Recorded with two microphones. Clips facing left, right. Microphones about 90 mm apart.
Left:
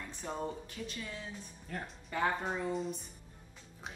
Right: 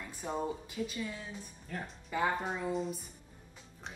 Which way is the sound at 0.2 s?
10° right (ahead or behind).